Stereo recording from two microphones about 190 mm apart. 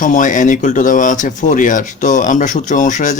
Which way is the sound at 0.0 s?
40° left (ahead or behind).